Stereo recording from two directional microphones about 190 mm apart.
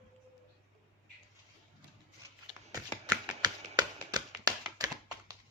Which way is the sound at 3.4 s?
20° right (ahead or behind).